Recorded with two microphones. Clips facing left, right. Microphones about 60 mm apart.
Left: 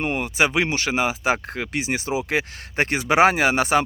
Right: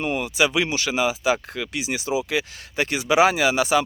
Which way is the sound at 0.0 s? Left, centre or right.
Left.